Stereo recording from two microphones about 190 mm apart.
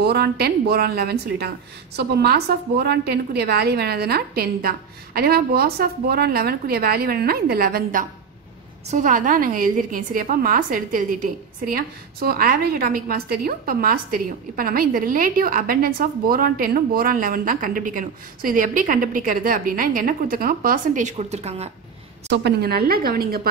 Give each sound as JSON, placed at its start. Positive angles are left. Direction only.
{"t": 0.0, "sound": "a woman's voice", "side_deg": -55}
{"t": 22.3, "sound": "a woman's voice", "side_deg": -60}